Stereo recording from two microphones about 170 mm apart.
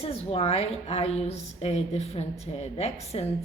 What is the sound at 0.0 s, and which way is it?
A woman's voice, 35° left (ahead or behind).